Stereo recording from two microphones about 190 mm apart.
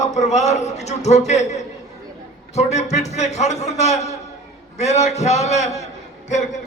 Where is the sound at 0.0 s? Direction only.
35° left (ahead or behind).